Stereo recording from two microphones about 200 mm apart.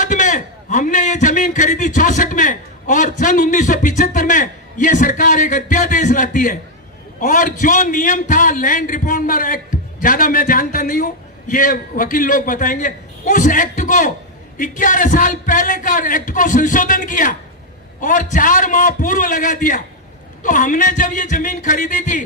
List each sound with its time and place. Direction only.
0.0 s a man's voice: 40° left (ahead or behind)